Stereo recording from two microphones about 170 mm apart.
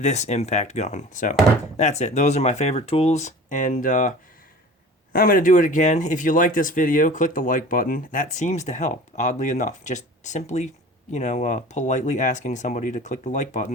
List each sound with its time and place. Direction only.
0.0 s speech: 40° left (ahead or behind)
5.1 s speech: 55° left (ahead or behind)